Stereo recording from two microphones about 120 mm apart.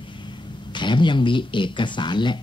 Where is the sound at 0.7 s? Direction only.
40° left (ahead or behind).